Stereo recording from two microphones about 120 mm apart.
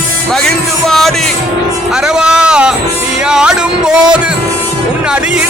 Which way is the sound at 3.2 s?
5° right (ahead or behind).